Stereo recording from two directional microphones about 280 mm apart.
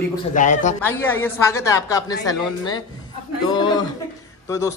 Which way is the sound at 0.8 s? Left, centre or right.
Centre.